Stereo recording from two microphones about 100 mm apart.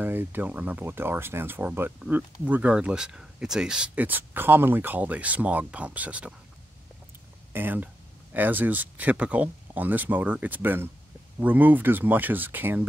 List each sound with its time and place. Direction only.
0.0 s speech: 20° right (ahead or behind)
7.5 s speech: 20° right (ahead or behind)